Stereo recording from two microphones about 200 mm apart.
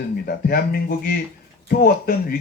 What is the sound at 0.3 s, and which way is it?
Speech, 50° left (ahead or behind).